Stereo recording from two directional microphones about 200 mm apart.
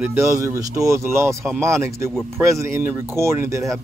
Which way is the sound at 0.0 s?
10° right (ahead or behind).